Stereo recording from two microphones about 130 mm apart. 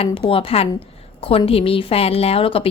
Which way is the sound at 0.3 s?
45° left (ahead or behind).